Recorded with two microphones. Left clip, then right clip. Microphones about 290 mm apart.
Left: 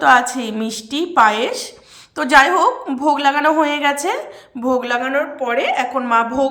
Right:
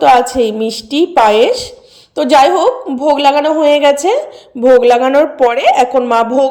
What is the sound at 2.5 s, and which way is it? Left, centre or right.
Speech, centre.